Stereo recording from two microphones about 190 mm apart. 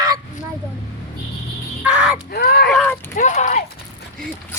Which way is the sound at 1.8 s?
5° right (ahead or behind).